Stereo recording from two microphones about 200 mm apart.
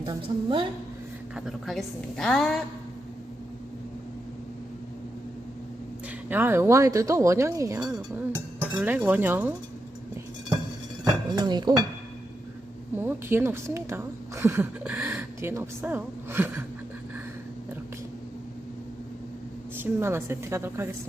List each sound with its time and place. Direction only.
0.0 s a woman's voice: 25° right (ahead or behind)
1.5 s a woman's voice: centre (ahead or behind)
6.2 s a woman's voice: 10° right (ahead or behind)
11.0 s cutlery: 20° right (ahead or behind)
13.0 s a woman's voice: 10° right (ahead or behind)
19.8 s a woman's voice: 10° right (ahead or behind)